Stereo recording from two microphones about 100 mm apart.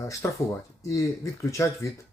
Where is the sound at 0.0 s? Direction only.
30° left (ahead or behind).